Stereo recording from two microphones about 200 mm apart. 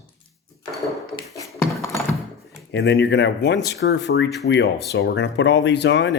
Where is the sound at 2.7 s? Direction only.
60° left (ahead or behind).